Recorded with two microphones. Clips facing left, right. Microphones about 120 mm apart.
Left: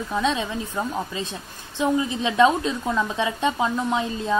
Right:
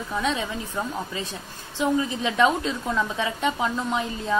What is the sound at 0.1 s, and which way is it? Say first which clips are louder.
A woman's voice: left 2 dB; 20° left (ahead or behind).